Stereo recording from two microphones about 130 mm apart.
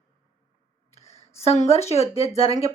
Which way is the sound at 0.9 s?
50° left (ahead or behind).